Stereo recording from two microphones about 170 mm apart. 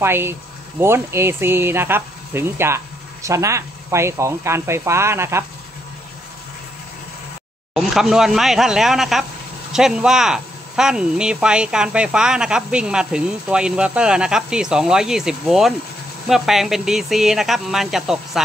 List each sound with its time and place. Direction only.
0.0 s speech: 15° right (ahead or behind)
7.7 s speech: centre (ahead or behind)